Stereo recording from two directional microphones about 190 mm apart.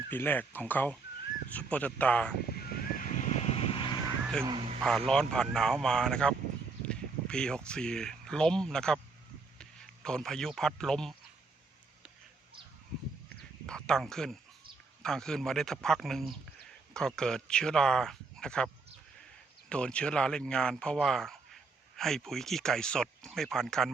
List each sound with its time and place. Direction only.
0.1 s speech: 10° left (ahead or behind)
2.6 s vehicle: 50° left (ahead or behind); by 4.0 s 25° left (ahead or behind)
4.4 s speech: 30° right (ahead or behind)
4.8 s speech: 5° left (ahead or behind)
13.7 s speech: 5° left (ahead or behind)